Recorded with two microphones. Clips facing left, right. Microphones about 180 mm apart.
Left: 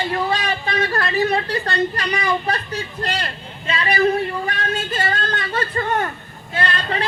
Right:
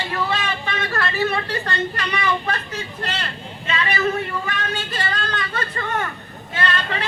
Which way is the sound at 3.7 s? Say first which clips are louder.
Left 4 dB; 35° left (ahead or behind).